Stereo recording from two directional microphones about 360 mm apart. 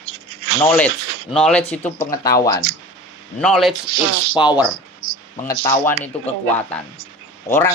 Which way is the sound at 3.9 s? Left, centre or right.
Right.